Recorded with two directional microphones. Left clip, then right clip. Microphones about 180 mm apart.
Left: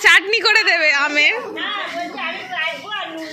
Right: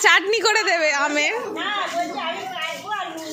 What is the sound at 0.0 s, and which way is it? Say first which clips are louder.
A woman's voice: left 3 dB; 20° right (ahead or behind).